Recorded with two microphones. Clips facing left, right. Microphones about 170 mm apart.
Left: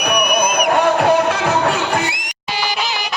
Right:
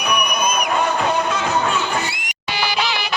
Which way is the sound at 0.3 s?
70° left (ahead or behind).